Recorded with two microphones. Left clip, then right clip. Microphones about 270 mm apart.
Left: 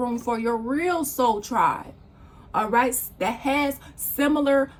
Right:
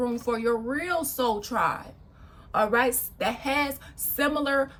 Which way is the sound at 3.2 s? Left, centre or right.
Centre.